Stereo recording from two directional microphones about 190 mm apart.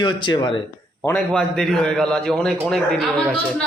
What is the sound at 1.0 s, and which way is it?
A man's voice, 10° left (ahead or behind).